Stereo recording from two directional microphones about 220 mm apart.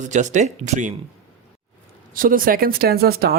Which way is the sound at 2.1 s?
40° right (ahead or behind).